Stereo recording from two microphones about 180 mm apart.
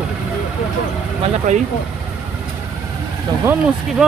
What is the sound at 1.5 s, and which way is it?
Speech, 45° right (ahead or behind).